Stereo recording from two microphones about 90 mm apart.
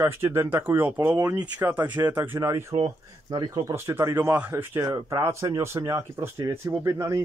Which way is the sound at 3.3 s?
45° right (ahead or behind).